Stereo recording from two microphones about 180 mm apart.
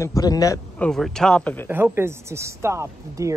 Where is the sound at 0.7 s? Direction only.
5° left (ahead or behind).